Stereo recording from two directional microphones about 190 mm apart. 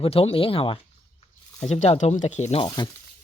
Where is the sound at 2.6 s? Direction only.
25° left (ahead or behind).